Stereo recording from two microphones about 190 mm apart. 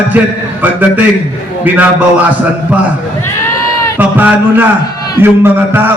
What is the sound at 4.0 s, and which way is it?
A man's voice, 10° right (ahead or behind).